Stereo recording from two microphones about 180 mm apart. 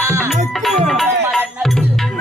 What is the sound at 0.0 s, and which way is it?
Music, 15° right (ahead or behind).